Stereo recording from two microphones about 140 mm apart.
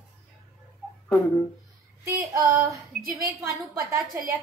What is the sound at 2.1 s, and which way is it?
Speech, 25° right (ahead or behind).